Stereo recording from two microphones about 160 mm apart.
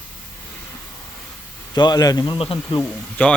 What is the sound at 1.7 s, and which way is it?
A man's voice, 25° left (ahead or behind).